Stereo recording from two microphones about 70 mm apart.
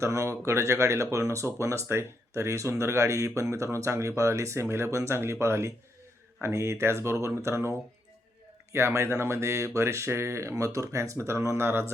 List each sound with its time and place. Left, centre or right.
0.0 s speech: right